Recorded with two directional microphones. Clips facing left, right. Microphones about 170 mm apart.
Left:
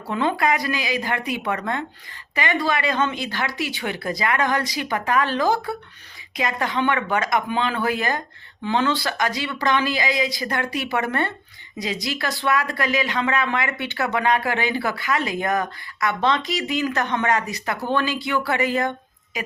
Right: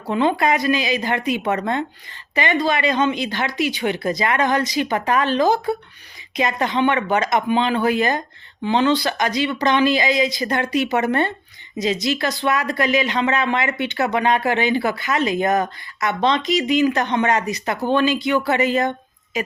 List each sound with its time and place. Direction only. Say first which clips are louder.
0.1 s speech: right 3 dB; 20° right (ahead or behind)